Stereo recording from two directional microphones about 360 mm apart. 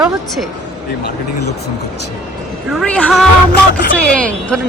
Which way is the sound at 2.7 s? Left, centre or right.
Centre.